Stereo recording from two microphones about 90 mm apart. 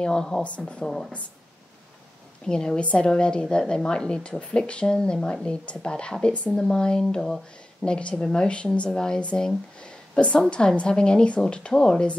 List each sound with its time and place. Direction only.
0.0 s a woman's voice: 10° left (ahead or behind)
2.4 s a woman's voice: 10° left (ahead or behind)